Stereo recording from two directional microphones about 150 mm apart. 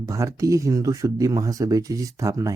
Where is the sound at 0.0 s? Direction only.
20° right (ahead or behind).